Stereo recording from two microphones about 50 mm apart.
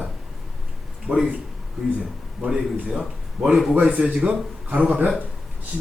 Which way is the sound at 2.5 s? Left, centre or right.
Centre.